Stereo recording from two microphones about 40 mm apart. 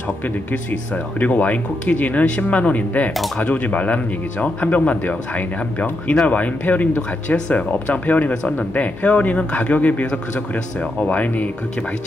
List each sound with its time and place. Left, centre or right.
0.5 s speech: left
7.0 s speech: left
8.3 s speech: left